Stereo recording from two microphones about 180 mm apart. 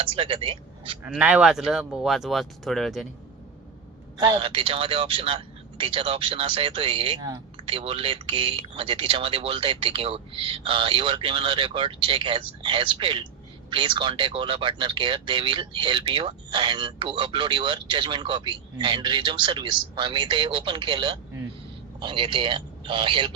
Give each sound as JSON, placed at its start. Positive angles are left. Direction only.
{"t": 0.0, "sound": "speech", "side_deg": -30}
{"t": 1.0, "sound": "speech", "side_deg": -10}
{"t": 4.2, "sound": "speech", "side_deg": -30}